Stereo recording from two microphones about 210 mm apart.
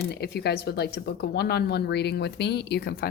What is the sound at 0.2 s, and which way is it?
A woman's voice, 50° left (ahead or behind).